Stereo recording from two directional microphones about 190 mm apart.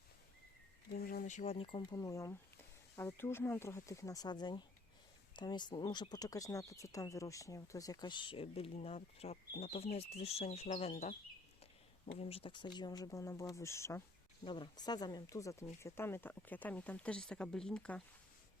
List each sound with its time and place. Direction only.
0.9 s speech: 50° left (ahead or behind); by 11.1 s 35° left (ahead or behind)
12.1 s speech: 30° left (ahead or behind); by 14.0 s 15° left (ahead or behind)
14.4 s speech: 25° left (ahead or behind); by 18.0 s 5° left (ahead or behind)